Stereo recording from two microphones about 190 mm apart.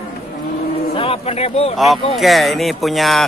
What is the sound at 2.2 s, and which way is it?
Speech, centre (ahead or behind).